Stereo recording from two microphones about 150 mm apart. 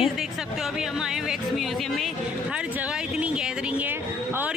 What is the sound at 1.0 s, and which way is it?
Speech, 5° right (ahead or behind).